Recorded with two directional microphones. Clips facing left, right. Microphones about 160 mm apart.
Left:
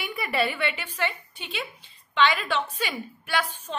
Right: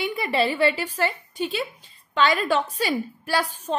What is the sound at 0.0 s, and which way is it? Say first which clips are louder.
A woman's voice: right 4 dB; 25° right (ahead or behind).